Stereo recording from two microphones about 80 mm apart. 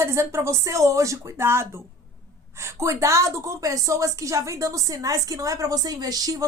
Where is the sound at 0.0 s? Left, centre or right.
Right.